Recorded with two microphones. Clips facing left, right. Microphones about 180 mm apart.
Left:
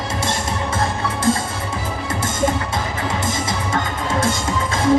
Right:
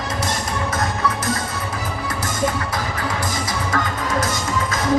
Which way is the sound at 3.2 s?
25° left (ahead or behind).